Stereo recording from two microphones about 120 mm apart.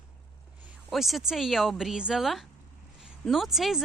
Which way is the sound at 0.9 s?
Centre (ahead or behind).